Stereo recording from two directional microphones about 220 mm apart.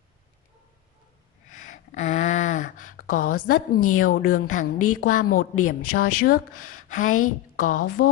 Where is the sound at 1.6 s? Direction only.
35° left (ahead or behind).